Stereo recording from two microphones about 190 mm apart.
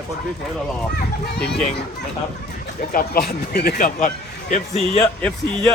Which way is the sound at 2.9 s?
55° left (ahead or behind).